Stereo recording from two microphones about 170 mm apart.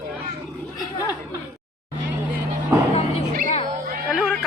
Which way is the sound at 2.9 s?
40° left (ahead or behind).